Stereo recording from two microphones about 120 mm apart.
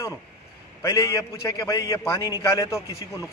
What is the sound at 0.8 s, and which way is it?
A man's voice, 25° left (ahead or behind).